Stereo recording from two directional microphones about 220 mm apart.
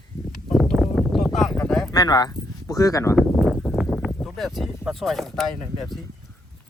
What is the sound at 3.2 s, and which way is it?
Speech, centre (ahead or behind).